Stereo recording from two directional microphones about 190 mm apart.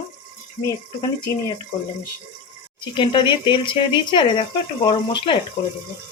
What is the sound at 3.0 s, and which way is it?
Speech, 25° left (ahead or behind).